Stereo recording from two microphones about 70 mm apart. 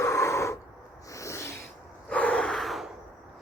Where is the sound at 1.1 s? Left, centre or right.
Left.